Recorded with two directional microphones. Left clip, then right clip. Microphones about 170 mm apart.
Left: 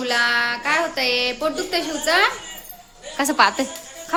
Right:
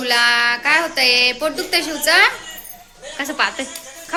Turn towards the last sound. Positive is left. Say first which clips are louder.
# left 3 dB
turn(degrees=40)  # may be behind; listen again after turning